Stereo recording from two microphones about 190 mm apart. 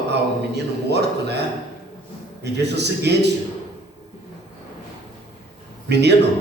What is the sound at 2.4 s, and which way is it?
Speech, 60° right (ahead or behind).